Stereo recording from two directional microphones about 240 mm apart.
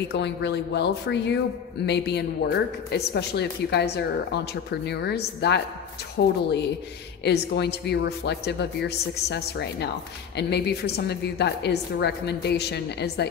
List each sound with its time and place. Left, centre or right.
0.1 s a woman's voice: left